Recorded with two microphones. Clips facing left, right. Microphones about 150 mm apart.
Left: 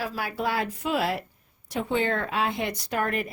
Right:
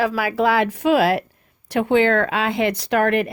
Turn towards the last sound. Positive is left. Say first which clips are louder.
# right 9 dB
turn(degrees=-75)  # may be behind; listen again after turning